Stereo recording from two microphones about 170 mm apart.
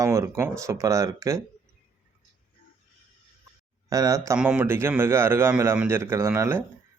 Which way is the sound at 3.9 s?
20° right (ahead or behind).